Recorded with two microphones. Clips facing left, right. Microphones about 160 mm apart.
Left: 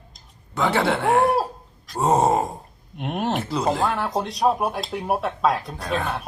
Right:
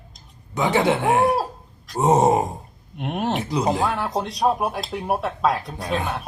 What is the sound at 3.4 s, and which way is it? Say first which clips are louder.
Speech: right 1 dB; 15° right (ahead or behind).